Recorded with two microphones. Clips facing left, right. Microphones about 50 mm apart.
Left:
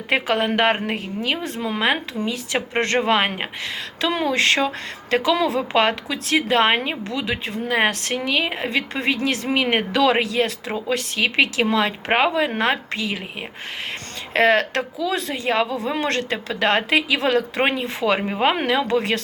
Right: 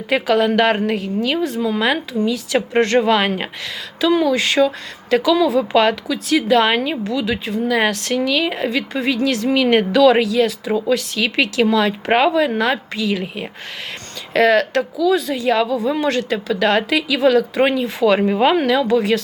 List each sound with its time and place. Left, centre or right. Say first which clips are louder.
0.1 s a woman's voice: right 4 dB; left
1.5 s a woman's voice: right 6 dB; left
1.8 s a woman's voice: right 1 dB; left
4.0 s a sound: right 7 dB; left
4.3 s a woman's voice: right 3 dB; left
12.5 s a woman's voice: right 2 dB; left
14.3 s a woman's voice: right 3 dB; left
15.8 s a woman's voice: right 4 dB; left
18.0 s speech: right 5 dB; centre
18.7 s a woman's voice: right 4 dB; left